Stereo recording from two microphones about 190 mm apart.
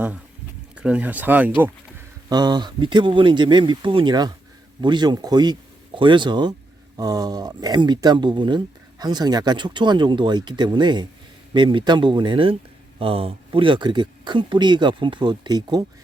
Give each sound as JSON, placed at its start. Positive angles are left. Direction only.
{"t": 0.8, "sound": "speech", "side_deg": -5}
{"t": 2.3, "sound": "speech", "side_deg": -20}